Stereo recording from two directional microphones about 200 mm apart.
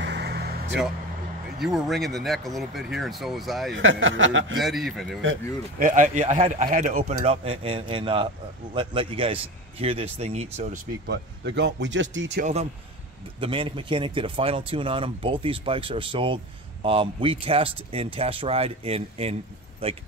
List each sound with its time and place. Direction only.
0.0 s vehicle: 55° right (ahead or behind)
1.6 s speech: centre (ahead or behind)
3.7 s speech: 70° right (ahead or behind)
4.6 s speech: centre (ahead or behind)
5.8 s speech: 40° right (ahead or behind)
11.1 s speech: 60° right (ahead or behind)
12.4 s speech: 35° right (ahead or behind)
13.4 s speech: 25° right (ahead or behind)